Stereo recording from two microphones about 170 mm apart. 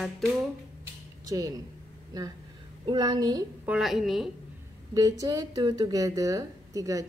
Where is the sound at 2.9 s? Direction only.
25° right (ahead or behind).